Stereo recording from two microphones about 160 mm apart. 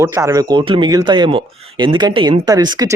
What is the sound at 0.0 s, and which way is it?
Speech, 20° right (ahead or behind).